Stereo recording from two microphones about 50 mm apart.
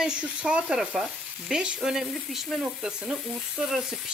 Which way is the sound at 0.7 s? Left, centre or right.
Centre.